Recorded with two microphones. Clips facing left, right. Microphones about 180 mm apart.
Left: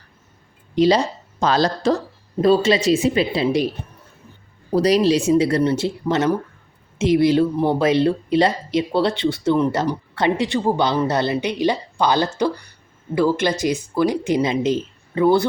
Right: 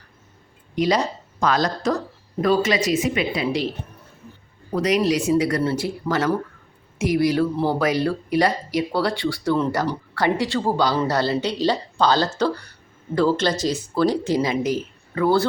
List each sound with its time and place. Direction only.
0.8 s speech: 30° left (ahead or behind)
4.7 s speech: 35° left (ahead or behind)